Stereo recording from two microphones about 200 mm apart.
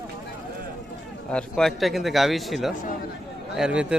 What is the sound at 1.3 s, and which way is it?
A man's voice, centre (ahead or behind).